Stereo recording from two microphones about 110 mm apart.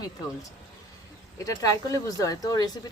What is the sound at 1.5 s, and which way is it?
Speech, 30° left (ahead or behind).